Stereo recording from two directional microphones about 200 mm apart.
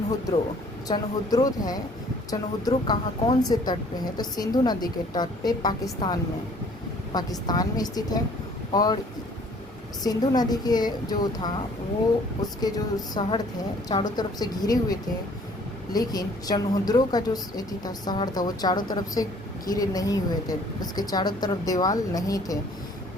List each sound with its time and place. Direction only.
0.9 s speech: 20° left (ahead or behind)
10.0 s speech: 20° left (ahead or behind)